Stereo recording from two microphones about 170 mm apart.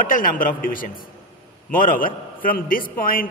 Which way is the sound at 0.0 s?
55° left (ahead or behind).